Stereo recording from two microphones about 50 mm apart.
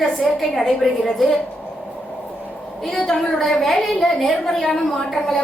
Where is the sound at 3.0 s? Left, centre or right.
Centre.